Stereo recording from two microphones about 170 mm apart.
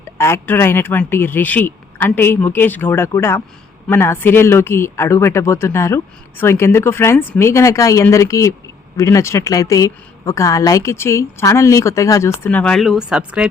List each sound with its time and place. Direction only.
0.2 s speech: 15° left (ahead or behind); by 13.5 s 5° right (ahead or behind)